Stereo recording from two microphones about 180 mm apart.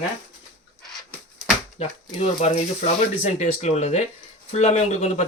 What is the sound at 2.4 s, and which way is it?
Speech, 40° left (ahead or behind).